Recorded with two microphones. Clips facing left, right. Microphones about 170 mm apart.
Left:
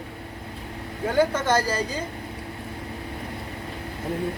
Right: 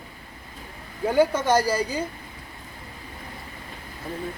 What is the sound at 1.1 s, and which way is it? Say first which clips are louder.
Speech: right 1 dB; 10° right (ahead or behind).